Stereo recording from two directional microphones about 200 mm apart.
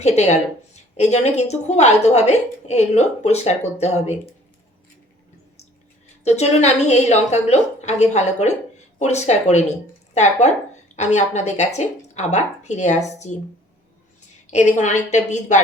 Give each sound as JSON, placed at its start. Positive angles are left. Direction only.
{"t": 0.0, "sound": "a woman's voice", "side_deg": 35}
{"t": 6.2, "sound": "a woman's voice", "side_deg": 35}
{"t": 10.9, "sound": "a woman's voice", "side_deg": 35}
{"t": 14.4, "sound": "a woman's voice", "side_deg": 35}